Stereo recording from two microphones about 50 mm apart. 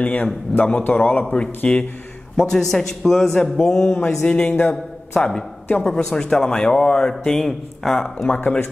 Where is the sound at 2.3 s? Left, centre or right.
Centre.